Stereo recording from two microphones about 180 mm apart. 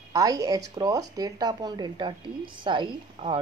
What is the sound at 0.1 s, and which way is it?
Speech, 20° right (ahead or behind).